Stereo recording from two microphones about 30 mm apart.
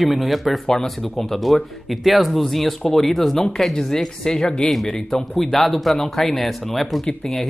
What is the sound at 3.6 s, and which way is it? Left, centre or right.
Speech, centre.